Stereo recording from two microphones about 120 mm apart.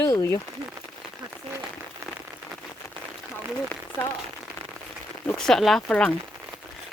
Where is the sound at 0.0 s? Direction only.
25° left (ahead or behind).